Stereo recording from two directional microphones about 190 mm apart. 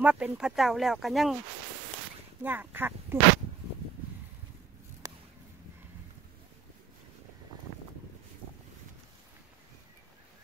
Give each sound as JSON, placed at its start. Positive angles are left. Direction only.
{"t": 0.0, "sound": "speech", "side_deg": -5}
{"t": 2.4, "sound": "speech", "side_deg": -10}
{"t": 5.0, "sound": "a sound", "side_deg": -15}